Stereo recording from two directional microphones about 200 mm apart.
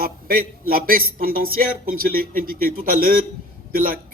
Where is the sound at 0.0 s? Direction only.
45° right (ahead or behind).